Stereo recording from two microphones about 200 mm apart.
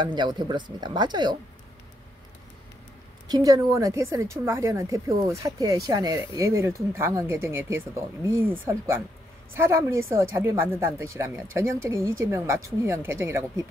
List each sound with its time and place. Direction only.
0.0 s speech: 20° right (ahead or behind)
3.3 s a woman's voice: 20° right (ahead or behind)